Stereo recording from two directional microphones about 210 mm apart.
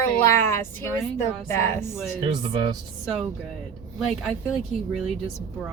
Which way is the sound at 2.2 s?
20° right (ahead or behind).